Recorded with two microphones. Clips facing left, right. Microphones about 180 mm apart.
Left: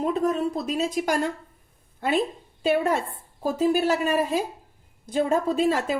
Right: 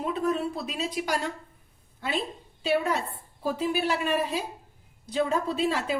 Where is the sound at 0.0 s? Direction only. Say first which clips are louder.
Left 4 dB; 45° left (ahead or behind).